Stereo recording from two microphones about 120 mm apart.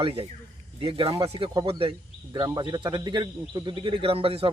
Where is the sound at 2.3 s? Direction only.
35° right (ahead or behind).